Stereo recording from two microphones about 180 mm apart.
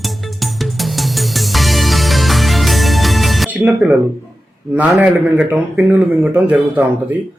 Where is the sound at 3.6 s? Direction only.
10° right (ahead or behind).